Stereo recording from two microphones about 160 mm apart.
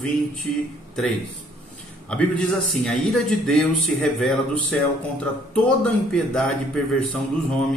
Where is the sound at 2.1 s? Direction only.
5° left (ahead or behind).